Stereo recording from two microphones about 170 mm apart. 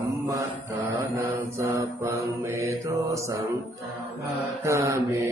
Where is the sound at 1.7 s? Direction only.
20° right (ahead or behind).